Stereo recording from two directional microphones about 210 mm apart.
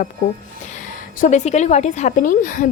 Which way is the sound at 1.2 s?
35° left (ahead or behind).